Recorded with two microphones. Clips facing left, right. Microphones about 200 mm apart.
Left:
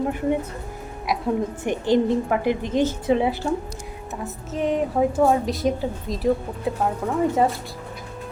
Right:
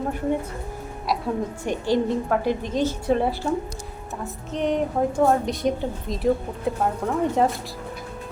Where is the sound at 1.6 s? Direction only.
20° left (ahead or behind).